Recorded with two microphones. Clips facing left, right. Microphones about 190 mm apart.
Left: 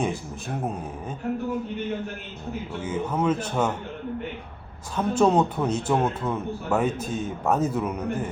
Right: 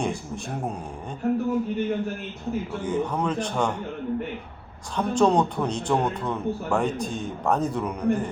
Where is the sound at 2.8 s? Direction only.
5° left (ahead or behind).